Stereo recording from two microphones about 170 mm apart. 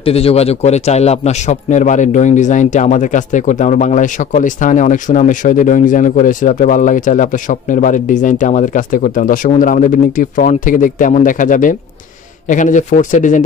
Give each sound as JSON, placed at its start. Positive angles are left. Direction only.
{"t": 0.0, "sound": "a man's voice", "side_deg": 35}